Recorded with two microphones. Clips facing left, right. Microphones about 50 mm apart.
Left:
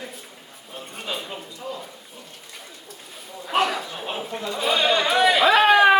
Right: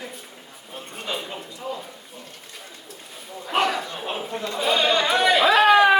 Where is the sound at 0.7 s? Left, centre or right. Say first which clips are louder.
Right 1 dB; centre.